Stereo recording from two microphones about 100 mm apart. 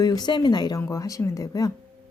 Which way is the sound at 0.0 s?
40° left (ahead or behind).